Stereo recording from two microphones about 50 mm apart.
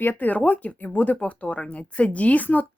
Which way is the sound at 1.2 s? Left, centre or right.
Left.